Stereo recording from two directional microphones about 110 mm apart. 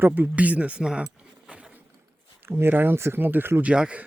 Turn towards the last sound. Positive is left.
turn(degrees=-10)  # may be behind; listen again after turning